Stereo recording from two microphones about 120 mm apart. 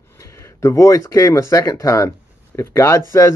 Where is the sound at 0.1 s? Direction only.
25° left (ahead or behind).